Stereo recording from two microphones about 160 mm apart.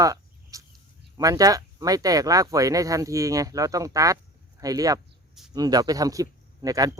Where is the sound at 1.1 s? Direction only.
20° right (ahead or behind).